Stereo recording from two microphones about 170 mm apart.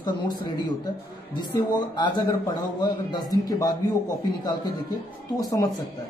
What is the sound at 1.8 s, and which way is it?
Speech, 25° left (ahead or behind).